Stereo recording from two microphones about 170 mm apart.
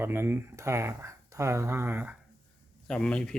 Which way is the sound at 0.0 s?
15° right (ahead or behind).